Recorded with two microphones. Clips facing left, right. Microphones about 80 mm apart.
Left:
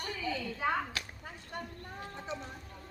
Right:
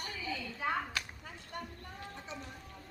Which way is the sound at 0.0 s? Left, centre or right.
Left.